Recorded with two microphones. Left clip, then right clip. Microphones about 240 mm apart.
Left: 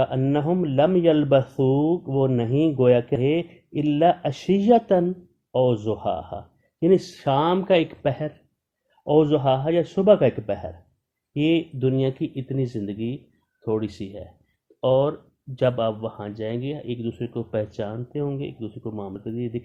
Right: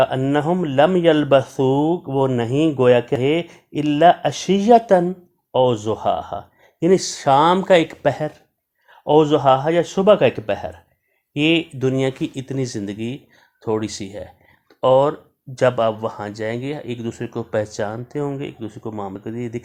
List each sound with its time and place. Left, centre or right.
0.0 s speech: centre
16.8 s speech: right
17.1 s speech: centre